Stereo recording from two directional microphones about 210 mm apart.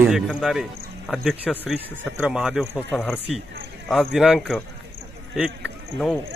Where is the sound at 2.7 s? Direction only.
10° left (ahead or behind).